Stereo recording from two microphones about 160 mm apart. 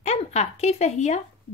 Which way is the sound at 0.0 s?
45° left (ahead or behind).